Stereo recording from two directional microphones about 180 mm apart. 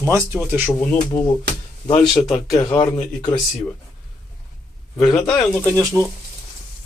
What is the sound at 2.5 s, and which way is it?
Speech, 20° left (ahead or behind).